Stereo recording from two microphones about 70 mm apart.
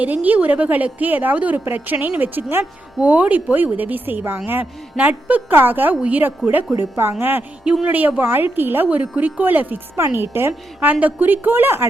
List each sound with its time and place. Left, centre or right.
0.0 s speech: right
4.9 s speech: centre
5.5 s speech: right
7.6 s speech: centre
7.9 s speech: right